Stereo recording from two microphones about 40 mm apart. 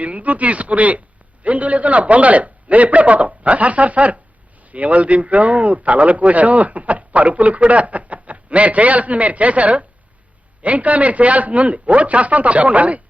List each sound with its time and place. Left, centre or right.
0.0 s a man's voice: right